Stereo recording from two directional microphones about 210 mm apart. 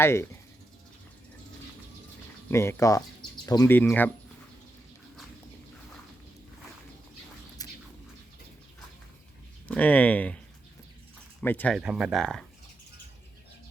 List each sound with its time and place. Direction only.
0.0 s speech: 10° left (ahead or behind)
2.5 s speech: 10° left (ahead or behind)
7.6 s a sound: 15° left (ahead or behind)
9.6 s speech: 5° left (ahead or behind)
11.3 s speech: 10° left (ahead or behind)
11.8 s speech: 5° right (ahead or behind)